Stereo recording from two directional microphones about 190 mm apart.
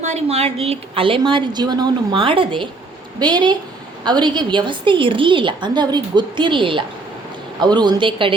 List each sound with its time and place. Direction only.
0.0 s a woman's voice: 35° right (ahead or behind)